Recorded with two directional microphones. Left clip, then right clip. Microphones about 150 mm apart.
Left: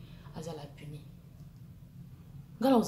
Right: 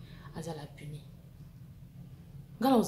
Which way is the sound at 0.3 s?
20° right (ahead or behind).